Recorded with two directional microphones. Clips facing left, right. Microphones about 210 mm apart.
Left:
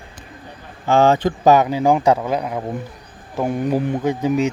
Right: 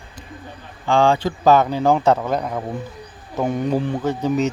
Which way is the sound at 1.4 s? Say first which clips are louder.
Even; 15° left (ahead or behind).